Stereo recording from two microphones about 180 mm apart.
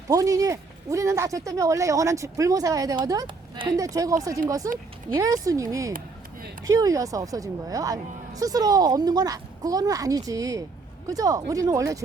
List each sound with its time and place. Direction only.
0.1 s speech: 20° right (ahead or behind)